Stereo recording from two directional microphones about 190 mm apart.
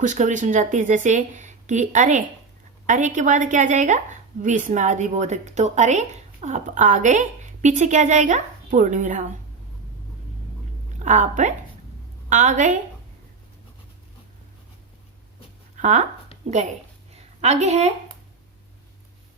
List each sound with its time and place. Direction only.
0.0 s a woman's voice: 40° right (ahead or behind)
11.0 s a woman's voice: 40° right (ahead or behind)
15.8 s a woman's voice: 40° right (ahead or behind)